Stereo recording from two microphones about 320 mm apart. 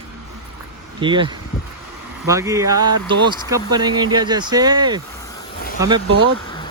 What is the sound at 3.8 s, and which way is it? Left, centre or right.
Speech, right.